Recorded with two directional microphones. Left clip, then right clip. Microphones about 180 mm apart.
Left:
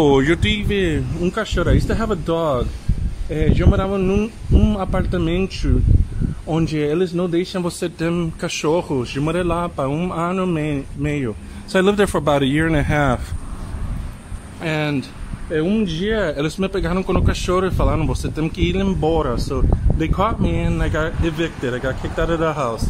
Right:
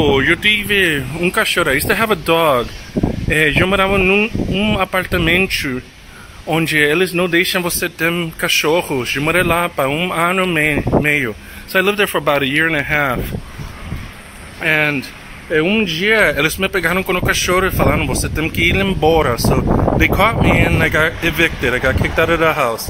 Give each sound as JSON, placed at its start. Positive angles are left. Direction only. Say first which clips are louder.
{"t": 0.0, "sound": "speech", "louder": "right 3 dB", "side_deg": 20}
{"t": 1.2, "sound": "speech", "louder": "right 7 dB", "side_deg": -5}
{"t": 11.7, "sound": "speech", "louder": "right 2 dB", "side_deg": 25}
{"t": 14.6, "sound": "speech", "louder": "right 7 dB", "side_deg": 5}
{"t": 15.5, "sound": "speech", "louder": "right 6 dB", "side_deg": -10}